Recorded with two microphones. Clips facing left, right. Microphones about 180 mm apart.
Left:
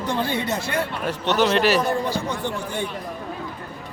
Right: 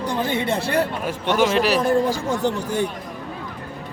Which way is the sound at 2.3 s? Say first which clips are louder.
Right 5 dB; 40° right (ahead or behind).